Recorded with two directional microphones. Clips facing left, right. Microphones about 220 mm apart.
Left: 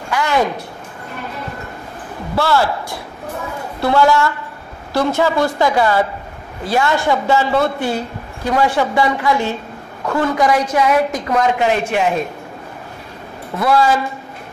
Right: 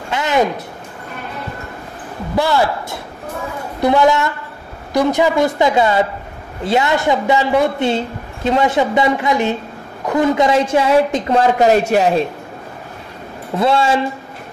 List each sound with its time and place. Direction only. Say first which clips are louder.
0.1 s a woman's voice: right 1 dB; 20° right (ahead or behind)
2.3 s a woman's voice: right 1 dB; 15° right (ahead or behind); by 12.3 s 35° right (ahead or behind)
13.6 s a woman's voice: even; 25° right (ahead or behind)